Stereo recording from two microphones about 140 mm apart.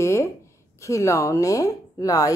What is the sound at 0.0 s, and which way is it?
A woman's voice, 20° left (ahead or behind).